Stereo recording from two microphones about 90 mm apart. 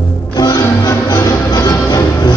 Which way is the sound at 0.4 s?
40° left (ahead or behind).